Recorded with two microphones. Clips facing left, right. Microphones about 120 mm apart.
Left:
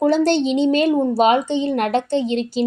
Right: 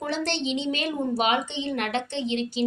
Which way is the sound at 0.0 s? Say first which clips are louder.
Left 12 dB; 40° left (ahead or behind).